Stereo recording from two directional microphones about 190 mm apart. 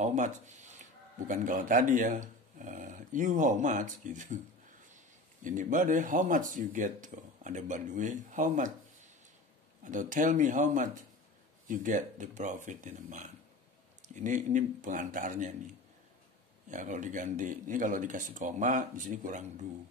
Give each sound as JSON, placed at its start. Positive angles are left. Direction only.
{"t": 0.0, "sound": "speech", "side_deg": -40}
{"t": 9.8, "sound": "speech", "side_deg": -45}